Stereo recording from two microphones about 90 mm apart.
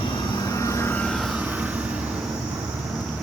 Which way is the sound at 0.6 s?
35° left (ahead or behind).